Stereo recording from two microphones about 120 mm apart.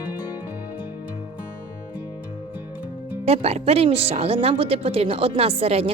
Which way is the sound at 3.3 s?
60° right (ahead or behind).